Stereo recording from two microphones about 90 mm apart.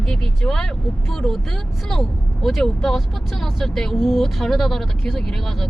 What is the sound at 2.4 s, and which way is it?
Speech, centre (ahead or behind).